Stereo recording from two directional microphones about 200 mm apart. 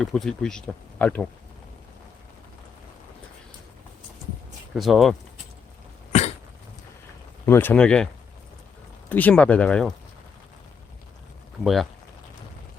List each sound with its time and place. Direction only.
0.0 s speech: centre (ahead or behind)
4.7 s speech: centre (ahead or behind)
6.1 s cough: 35° left (ahead or behind)
7.4 s speech: 10° left (ahead or behind)
9.0 s speech: 10° left (ahead or behind)
11.6 s speech: centre (ahead or behind)